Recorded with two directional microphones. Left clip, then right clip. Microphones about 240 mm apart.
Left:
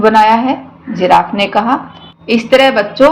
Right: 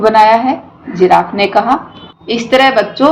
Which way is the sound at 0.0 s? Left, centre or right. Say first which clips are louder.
Right 1 dB; left.